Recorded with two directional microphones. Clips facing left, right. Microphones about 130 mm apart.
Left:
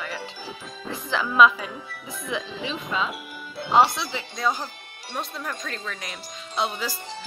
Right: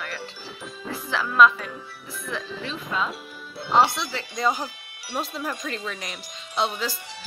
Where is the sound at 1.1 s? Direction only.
Centre (ahead or behind).